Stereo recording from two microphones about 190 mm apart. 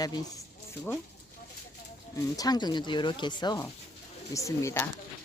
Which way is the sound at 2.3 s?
20° left (ahead or behind).